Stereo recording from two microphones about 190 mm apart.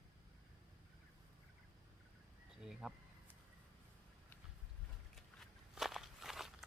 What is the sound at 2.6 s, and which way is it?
Speech, centre (ahead or behind).